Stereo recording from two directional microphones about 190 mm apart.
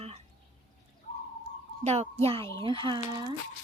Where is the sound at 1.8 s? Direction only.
35° right (ahead or behind).